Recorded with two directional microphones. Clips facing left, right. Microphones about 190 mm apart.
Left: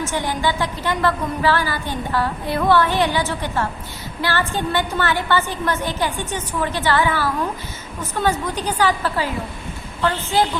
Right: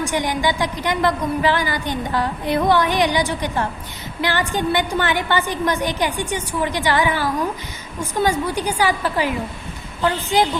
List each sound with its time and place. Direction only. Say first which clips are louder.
0.0 s a woman's voice: right 1 dB; 15° right (ahead or behind)